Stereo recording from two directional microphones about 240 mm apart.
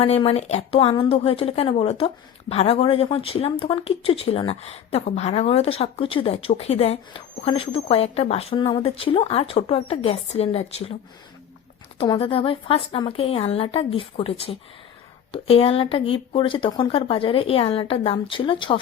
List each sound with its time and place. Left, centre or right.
0.0 s speech: left
11.9 s speech: left